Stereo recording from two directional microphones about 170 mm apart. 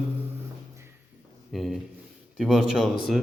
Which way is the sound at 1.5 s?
Centre (ahead or behind).